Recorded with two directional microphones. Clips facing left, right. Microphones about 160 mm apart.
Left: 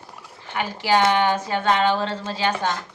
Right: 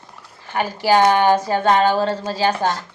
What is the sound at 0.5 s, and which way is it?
Speech, 40° right (ahead or behind).